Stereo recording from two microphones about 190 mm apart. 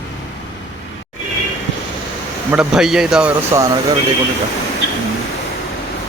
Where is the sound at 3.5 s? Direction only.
15° right (ahead or behind).